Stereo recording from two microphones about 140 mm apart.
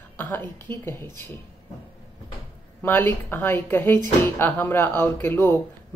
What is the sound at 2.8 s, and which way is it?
Speech, 15° left (ahead or behind).